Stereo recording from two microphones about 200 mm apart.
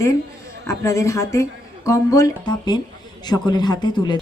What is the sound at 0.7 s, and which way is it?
Speech, 15° left (ahead or behind).